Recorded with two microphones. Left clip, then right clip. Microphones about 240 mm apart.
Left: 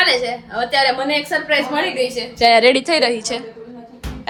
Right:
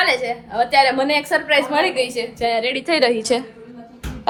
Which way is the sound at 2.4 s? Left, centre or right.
Left.